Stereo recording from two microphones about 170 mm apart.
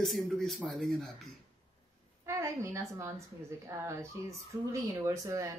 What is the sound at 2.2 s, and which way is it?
A woman's voice, 15° right (ahead or behind).